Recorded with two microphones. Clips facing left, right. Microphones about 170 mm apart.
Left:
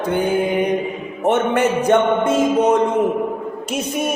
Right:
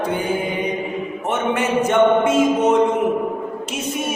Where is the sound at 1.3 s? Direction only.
45° left (ahead or behind).